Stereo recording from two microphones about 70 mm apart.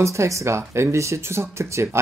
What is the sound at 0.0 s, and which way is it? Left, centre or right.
Speech, right.